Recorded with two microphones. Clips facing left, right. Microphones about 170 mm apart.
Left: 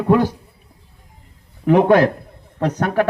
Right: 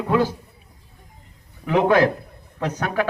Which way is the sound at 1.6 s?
50° left (ahead or behind).